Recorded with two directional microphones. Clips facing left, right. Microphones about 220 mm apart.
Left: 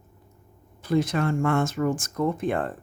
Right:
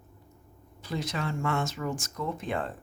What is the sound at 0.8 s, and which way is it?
Speech, 50° left (ahead or behind).